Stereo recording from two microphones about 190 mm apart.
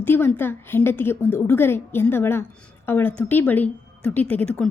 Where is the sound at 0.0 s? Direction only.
10° left (ahead or behind).